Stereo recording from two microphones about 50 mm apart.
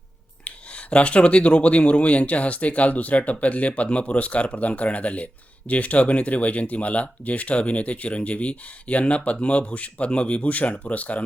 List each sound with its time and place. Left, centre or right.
0.4 s speech: left